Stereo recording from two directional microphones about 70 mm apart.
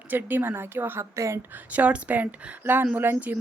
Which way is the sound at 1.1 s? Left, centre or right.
Right.